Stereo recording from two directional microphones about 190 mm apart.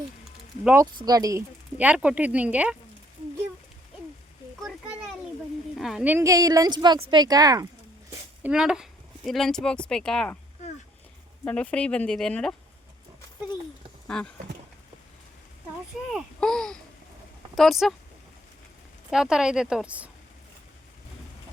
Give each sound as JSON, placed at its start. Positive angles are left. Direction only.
{"t": 0.6, "sound": "speech", "side_deg": -10}
{"t": 0.9, "sound": "speech", "side_deg": -20}
{"t": 5.7, "sound": "a woman's voice", "side_deg": 0}
{"t": 8.4, "sound": "speech", "side_deg": -5}
{"t": 11.4, "sound": "speech", "side_deg": 5}
{"t": 14.1, "sound": "speech", "side_deg": 5}
{"t": 16.1, "sound": "speech", "side_deg": 5}
{"t": 19.1, "sound": "speech", "side_deg": -5}